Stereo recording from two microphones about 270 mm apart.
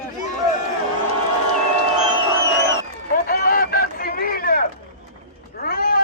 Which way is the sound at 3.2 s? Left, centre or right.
Left.